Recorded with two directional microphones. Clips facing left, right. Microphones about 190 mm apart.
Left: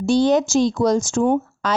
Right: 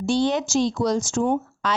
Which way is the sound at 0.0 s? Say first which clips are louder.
Left 5 dB; 40° left (ahead or behind).